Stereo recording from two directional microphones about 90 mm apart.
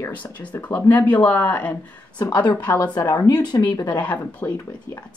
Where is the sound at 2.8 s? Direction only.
40° left (ahead or behind).